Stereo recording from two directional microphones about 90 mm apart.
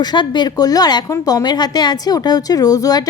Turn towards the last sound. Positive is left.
turn(degrees=45)  # may be behind; listen again after turning